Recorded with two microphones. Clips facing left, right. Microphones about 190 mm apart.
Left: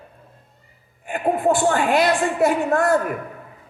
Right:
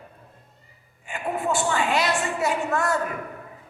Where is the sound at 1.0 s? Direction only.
55° left (ahead or behind).